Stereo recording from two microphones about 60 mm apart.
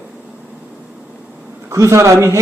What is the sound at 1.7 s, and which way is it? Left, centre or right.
Speech, right.